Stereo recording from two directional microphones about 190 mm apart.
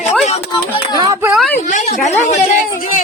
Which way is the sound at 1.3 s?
Centre (ahead or behind).